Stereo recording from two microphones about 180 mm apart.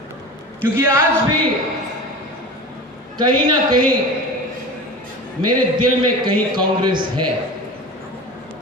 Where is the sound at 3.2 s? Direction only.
25° right (ahead or behind).